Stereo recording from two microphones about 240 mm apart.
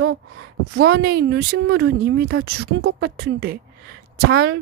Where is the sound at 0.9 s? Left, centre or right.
Right.